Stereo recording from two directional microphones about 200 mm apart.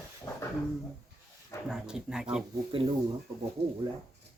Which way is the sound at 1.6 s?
5° right (ahead or behind).